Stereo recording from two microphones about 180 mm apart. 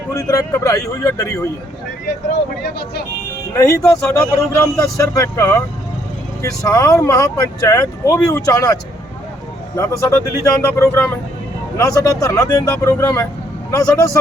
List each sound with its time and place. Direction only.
0.1 s speech: 15° left (ahead or behind)
3.5 s speech: 20° left (ahead or behind)